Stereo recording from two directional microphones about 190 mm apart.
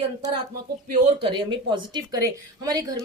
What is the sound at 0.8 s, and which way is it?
A woman's voice, 30° right (ahead or behind).